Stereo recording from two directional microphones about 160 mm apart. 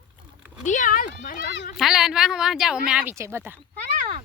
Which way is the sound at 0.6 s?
50° left (ahead or behind).